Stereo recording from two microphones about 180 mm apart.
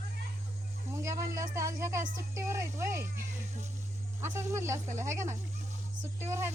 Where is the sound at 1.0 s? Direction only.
15° right (ahead or behind).